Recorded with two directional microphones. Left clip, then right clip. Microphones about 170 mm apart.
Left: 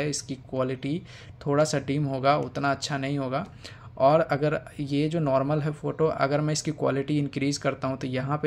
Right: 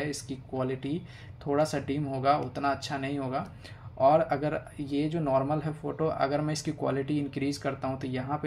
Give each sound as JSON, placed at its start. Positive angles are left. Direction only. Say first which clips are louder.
{"t": 0.0, "sound": "speech", "louder": "left 4 dB", "side_deg": 35}